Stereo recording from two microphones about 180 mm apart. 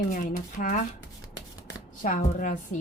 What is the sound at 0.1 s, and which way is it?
Speech, 45° left (ahead or behind).